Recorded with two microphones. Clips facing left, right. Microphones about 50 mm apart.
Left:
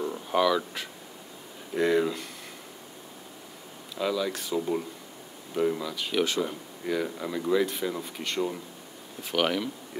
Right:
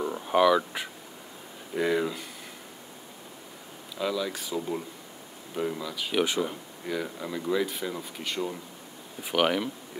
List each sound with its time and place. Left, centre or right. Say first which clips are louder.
0.0 s a sound: right 2 dB; centre
1.7 s speech: left 2 dB; centre
3.9 s speech: left 1 dB; centre
6.1 s speech: even; centre
6.8 s speech: left 3 dB; centre
9.2 s speech: right 1 dB; centre